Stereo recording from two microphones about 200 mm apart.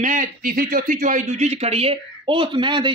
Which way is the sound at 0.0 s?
40° right (ahead or behind).